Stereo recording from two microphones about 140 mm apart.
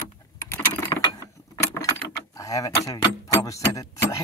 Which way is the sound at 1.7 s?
25° left (ahead or behind).